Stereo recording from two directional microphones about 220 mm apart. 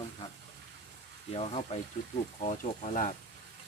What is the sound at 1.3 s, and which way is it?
Speech, 25° left (ahead or behind).